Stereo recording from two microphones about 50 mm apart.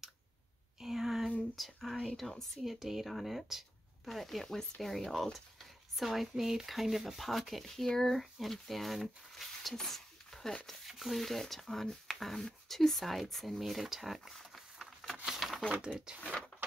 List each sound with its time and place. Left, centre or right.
0.7 s a sound: centre
1.5 s whispering: centre
2.0 s speech: centre
2.6 s speech: centre
10.9 s speech: centre
14.3 s a sound: centre
15.8 s speech: centre